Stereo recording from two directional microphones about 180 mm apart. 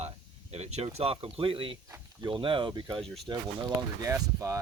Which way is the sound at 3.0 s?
Centre (ahead or behind).